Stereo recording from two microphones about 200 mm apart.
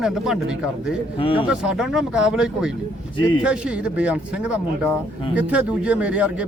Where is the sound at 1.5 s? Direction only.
5° right (ahead or behind).